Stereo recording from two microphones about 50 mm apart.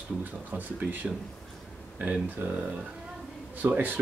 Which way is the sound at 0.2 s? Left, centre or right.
Right.